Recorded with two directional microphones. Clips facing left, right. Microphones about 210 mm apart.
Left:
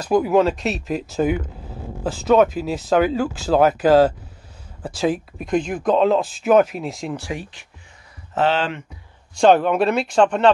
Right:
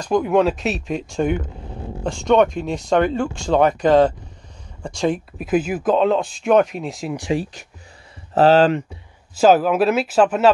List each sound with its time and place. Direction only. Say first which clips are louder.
0.0 s speech: even; 5° left (ahead or behind)
8.4 s speech: right 7 dB; 40° right (ahead or behind)
9.3 s speech: even; 5° right (ahead or behind)